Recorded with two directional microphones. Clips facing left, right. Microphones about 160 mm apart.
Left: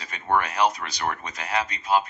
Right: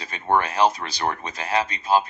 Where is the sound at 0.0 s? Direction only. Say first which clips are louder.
Right 2 dB; 30° right (ahead or behind).